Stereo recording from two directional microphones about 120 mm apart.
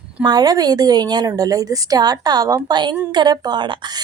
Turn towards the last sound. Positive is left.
turn(degrees=-35)  # may be behind; listen again after turning